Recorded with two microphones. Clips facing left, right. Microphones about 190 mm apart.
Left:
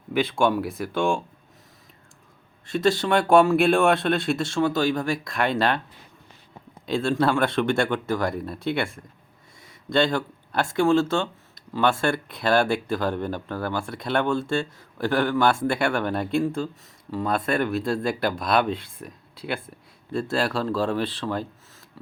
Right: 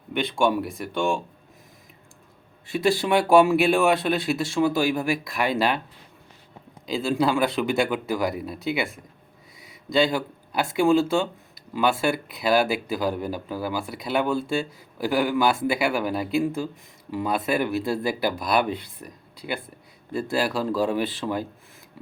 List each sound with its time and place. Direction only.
0.1 s speech: centre (ahead or behind)
2.6 s speech: 5° right (ahead or behind)
6.8 s speech: centre (ahead or behind)
9.6 s a sound: 5° right (ahead or behind)
10.8 s speech: 10° right (ahead or behind)